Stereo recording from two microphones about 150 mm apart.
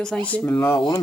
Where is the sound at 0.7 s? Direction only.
30° left (ahead or behind).